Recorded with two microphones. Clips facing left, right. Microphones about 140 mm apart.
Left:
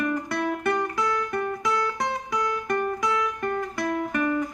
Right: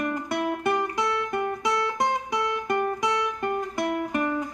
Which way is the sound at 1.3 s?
15° right (ahead or behind).